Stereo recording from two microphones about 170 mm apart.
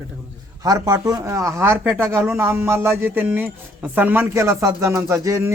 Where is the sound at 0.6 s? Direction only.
20° right (ahead or behind).